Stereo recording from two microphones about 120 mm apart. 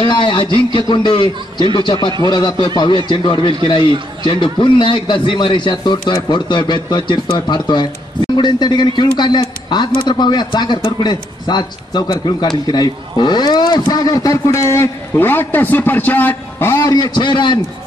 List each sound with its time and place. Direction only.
0.0 s a man's voice: 40° left (ahead or behind)